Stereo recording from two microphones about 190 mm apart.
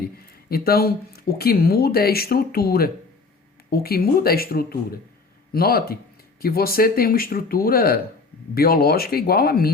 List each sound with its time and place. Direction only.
0.2 s speech: 55° left (ahead or behind)